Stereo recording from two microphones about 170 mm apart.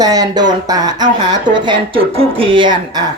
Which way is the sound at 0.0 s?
20° right (ahead or behind).